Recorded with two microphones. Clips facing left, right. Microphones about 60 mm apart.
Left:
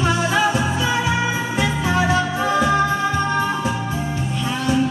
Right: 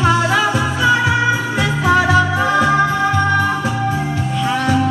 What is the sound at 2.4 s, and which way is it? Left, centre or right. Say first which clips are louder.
Music: right 3 dB; right.